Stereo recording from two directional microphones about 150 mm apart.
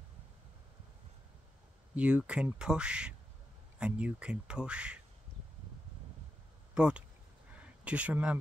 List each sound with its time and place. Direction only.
2.0 s speech: 5° right (ahead or behind)
6.7 s speech: 5° right (ahead or behind)